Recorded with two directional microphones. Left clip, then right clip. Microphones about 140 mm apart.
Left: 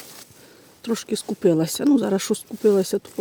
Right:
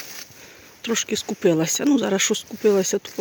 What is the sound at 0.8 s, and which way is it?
Speech, 40° left (ahead or behind).